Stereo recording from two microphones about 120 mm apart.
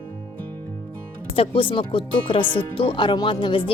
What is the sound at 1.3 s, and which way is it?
Speech, 50° left (ahead or behind).